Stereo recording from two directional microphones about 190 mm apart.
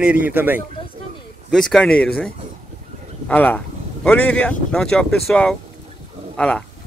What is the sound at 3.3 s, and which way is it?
Speech, 10° left (ahead or behind).